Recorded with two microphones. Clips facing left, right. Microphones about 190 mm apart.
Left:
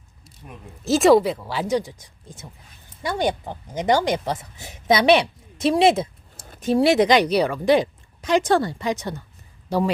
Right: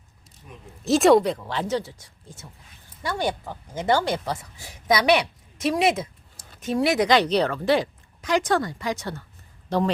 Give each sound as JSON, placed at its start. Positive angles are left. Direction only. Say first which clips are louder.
{"t": 0.9, "sound": "speech", "louder": "left 1 dB", "side_deg": 0}
{"t": 7.1, "sound": "speech", "louder": "left 2 dB", "side_deg": 10}